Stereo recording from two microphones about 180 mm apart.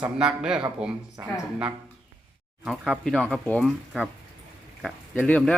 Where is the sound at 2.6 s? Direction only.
Centre (ahead or behind).